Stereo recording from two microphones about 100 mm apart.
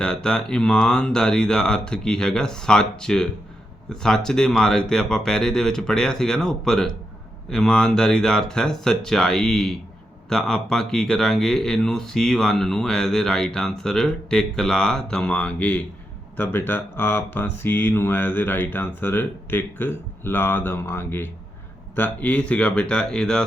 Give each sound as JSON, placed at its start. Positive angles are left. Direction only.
{"t": 0.0, "sound": "speech", "side_deg": 10}